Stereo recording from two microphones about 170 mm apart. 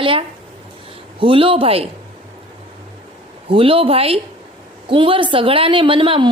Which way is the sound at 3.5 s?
35° right (ahead or behind).